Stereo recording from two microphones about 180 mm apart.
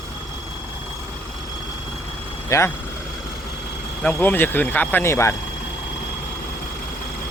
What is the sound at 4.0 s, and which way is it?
Speech, 10° left (ahead or behind).